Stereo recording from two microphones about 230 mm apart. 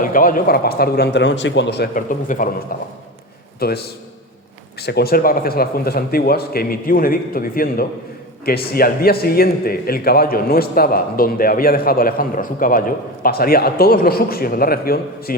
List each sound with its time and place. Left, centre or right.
0.0 s a man's voice: left